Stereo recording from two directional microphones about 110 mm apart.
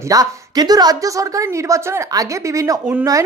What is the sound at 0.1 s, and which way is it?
A woman's voice, 35° right (ahead or behind).